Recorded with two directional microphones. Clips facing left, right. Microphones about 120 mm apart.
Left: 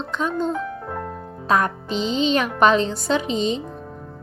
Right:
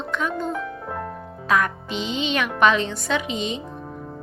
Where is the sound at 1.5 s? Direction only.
35° left (ahead or behind).